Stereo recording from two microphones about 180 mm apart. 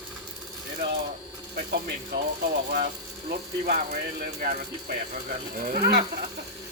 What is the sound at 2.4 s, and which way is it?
Speech, 55° right (ahead or behind).